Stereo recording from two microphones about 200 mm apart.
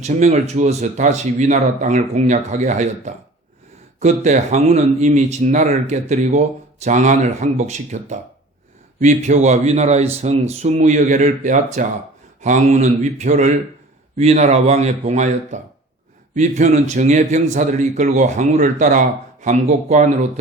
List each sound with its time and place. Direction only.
0.0 s speech: 35° right (ahead or behind)